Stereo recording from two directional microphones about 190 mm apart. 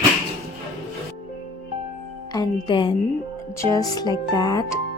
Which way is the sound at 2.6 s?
25° left (ahead or behind).